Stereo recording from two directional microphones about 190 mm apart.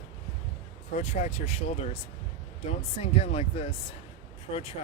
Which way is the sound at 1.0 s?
35° left (ahead or behind).